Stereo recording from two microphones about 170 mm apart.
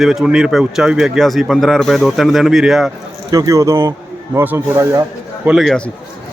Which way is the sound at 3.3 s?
20° right (ahead or behind).